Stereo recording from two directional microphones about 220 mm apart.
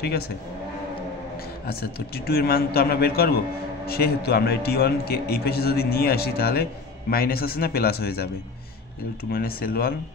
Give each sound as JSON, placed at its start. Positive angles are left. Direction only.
{"t": 1.7, "sound": "a man's voice", "side_deg": 45}
{"t": 9.3, "sound": "speech", "side_deg": 40}